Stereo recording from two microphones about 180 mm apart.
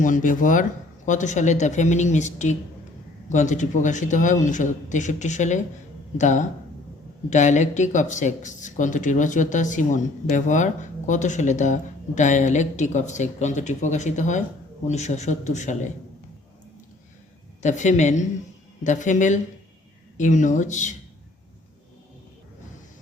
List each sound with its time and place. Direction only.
0.0 s speech: 45° left (ahead or behind)
17.6 s speech: 40° left (ahead or behind)